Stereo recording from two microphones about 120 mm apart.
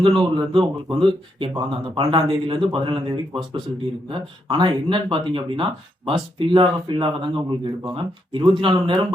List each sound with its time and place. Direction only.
0.0 s a man's voice: 40° right (ahead or behind)